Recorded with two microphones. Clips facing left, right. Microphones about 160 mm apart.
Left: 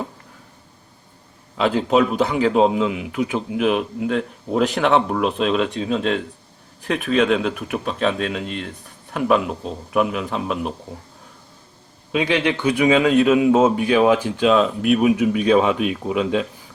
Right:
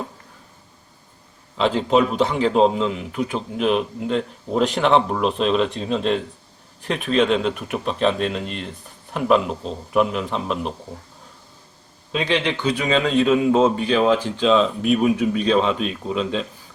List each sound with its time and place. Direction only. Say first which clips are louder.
1.5 s a man's voice: left 1 dB; 5° left (ahead or behind)
12.1 s a man's voice: left 2 dB; 10° left (ahead or behind)